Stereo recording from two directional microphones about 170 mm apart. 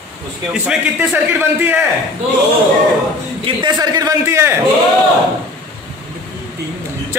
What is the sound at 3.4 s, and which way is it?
A man's voice, 25° right (ahead or behind).